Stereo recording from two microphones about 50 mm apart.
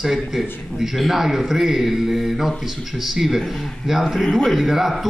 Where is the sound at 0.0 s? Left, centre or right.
Centre.